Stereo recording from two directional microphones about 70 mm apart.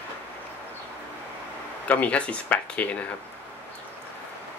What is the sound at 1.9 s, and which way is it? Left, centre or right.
Speech, left.